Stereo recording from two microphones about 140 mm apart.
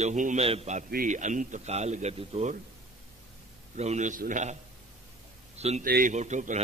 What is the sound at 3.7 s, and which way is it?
Speech, 55° right (ahead or behind).